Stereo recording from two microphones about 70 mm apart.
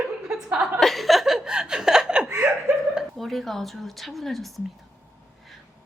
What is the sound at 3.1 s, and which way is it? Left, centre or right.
Speech, centre.